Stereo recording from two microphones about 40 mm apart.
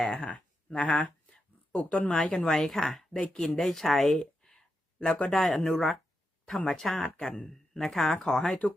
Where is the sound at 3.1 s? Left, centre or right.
Centre.